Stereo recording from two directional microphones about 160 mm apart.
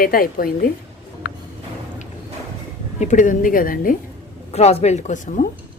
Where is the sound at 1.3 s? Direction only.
90° left.